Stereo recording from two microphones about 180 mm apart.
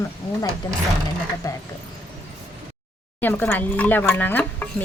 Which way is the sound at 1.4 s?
20° left (ahead or behind).